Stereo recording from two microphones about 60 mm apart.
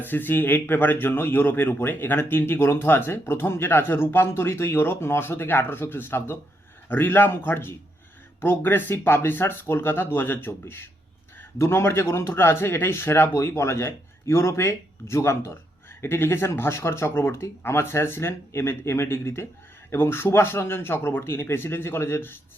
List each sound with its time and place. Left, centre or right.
0.0 s a man's voice: left